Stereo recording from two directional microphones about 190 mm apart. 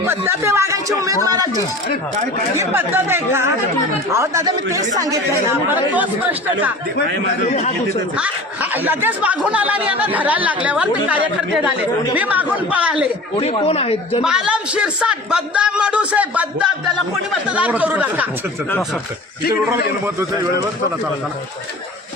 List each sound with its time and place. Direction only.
0.0 s speech: 15° right (ahead or behind)
2.6 s speech: 10° right (ahead or behind)
7.4 s speech: 35° left (ahead or behind)
8.7 s speech: 10° right (ahead or behind)
13.4 s speech: 30° left (ahead or behind)
14.3 s a man's voice: 5° right (ahead or behind)